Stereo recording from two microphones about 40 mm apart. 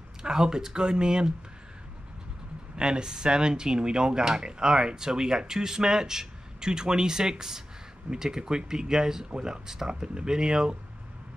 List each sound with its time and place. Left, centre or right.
0.2 s speech: centre
2.7 s speech: centre